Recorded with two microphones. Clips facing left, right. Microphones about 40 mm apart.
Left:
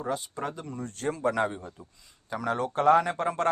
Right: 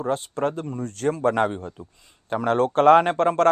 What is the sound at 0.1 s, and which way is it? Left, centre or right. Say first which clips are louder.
Speech: right 8 dB; right.